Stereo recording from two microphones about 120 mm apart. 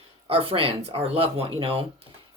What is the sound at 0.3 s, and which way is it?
Speech, 50° right (ahead or behind).